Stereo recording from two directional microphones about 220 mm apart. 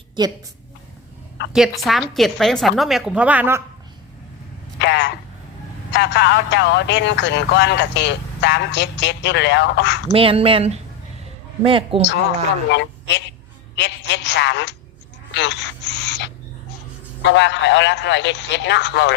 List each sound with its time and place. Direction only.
0.2 s speech: 20° right (ahead or behind)
1.5 s a woman's voice: centre (ahead or behind)
4.8 s a man's voice: 50° left (ahead or behind)
10.1 s speech: 25° right (ahead or behind)
12.6 s a man's voice: 50° left (ahead or behind)